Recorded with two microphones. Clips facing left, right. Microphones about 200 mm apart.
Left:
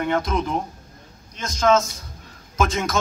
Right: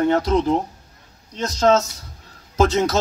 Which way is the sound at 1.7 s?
30° right (ahead or behind).